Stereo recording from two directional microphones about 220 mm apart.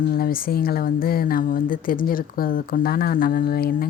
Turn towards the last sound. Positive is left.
turn(degrees=40)  # may be behind; listen again after turning